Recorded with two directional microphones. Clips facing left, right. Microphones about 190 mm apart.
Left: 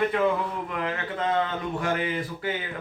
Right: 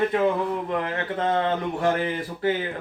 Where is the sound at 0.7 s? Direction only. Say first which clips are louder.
Right 4 dB; 30° right (ahead or behind).